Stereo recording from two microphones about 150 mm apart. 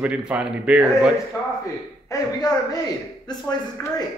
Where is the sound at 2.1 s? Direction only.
25° left (ahead or behind).